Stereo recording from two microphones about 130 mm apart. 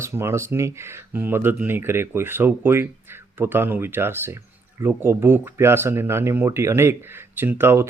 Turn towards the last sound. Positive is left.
turn(degrees=-15)  # may be behind; listen again after turning